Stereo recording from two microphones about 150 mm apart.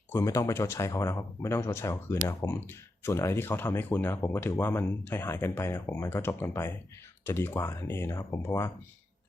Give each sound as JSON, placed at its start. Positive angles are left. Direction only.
{"t": 0.1, "sound": "speech", "side_deg": 20}